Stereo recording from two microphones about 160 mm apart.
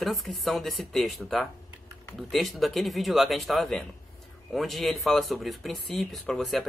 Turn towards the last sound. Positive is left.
turn(degrees=0)  # may be behind; listen again after turning